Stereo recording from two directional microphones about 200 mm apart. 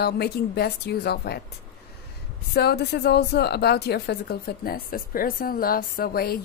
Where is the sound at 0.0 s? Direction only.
50° left (ahead or behind).